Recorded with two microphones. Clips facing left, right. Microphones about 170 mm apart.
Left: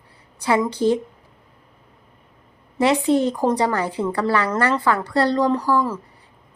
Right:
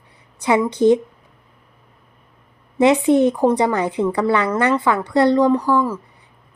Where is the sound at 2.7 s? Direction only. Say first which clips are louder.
Right 4 dB; 20° right (ahead or behind).